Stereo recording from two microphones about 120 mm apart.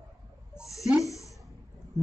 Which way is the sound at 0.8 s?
Centre (ahead or behind).